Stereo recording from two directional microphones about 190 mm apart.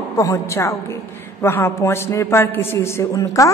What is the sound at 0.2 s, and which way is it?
A woman's voice, 15° left (ahead or behind).